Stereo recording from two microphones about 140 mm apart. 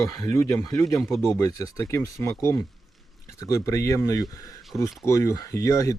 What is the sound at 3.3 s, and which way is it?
Speech, 25° left (ahead or behind).